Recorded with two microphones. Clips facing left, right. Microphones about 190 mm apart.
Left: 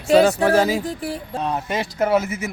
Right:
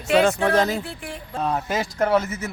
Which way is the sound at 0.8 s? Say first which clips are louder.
Left 8 dB; 40° left (ahead or behind).